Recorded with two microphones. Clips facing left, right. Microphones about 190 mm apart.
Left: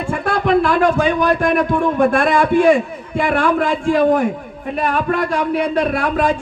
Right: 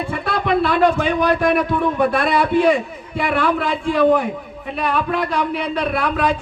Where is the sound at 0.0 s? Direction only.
45° left (ahead or behind).